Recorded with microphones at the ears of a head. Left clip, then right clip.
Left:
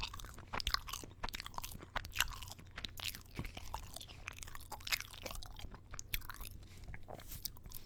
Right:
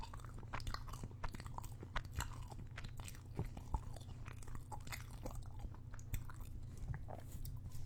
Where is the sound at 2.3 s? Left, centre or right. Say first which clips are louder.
Left 6 dB; left.